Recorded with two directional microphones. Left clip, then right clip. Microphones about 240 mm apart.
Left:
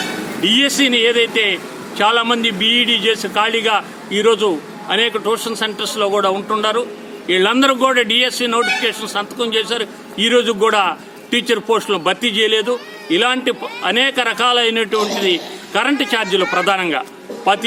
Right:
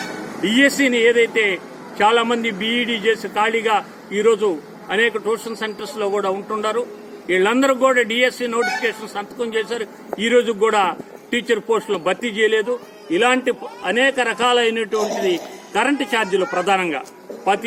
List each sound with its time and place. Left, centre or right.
0.4 s a man's voice: centre
14.9 s a man's voice: left
15.2 s a man's voice: centre